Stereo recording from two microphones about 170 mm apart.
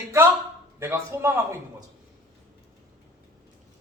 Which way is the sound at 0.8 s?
15° right (ahead or behind).